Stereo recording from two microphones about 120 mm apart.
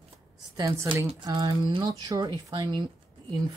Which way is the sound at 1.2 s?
35° right (ahead or behind).